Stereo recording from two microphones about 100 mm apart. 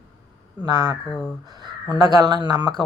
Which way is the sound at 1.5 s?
45° right (ahead or behind).